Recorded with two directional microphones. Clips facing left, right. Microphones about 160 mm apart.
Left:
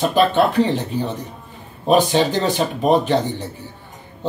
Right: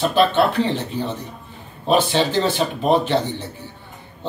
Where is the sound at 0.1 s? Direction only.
10° left (ahead or behind).